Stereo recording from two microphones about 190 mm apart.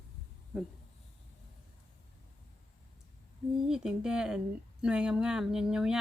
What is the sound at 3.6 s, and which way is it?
Speech, 5° right (ahead or behind).